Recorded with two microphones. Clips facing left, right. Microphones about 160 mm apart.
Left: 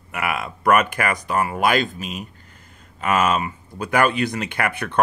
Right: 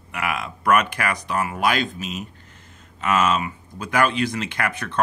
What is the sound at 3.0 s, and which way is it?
Speech, 50° left (ahead or behind).